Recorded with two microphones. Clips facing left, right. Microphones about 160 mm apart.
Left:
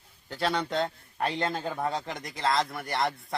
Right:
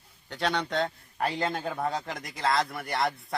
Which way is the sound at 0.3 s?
Centre (ahead or behind).